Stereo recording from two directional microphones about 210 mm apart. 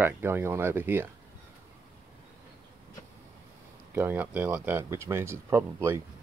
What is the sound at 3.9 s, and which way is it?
Speech, 10° right (ahead or behind).